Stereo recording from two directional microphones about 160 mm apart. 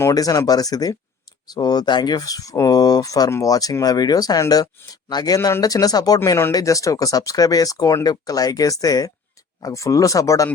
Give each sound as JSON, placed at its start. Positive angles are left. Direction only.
{"t": 0.0, "sound": "speech", "side_deg": 20}